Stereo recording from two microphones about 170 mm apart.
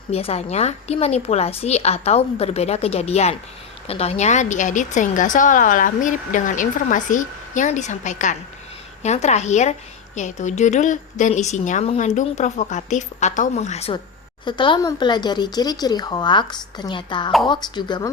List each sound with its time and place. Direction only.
0.1 s a woman's voice: 35° left (ahead or behind)
14.4 s speech: 25° left (ahead or behind)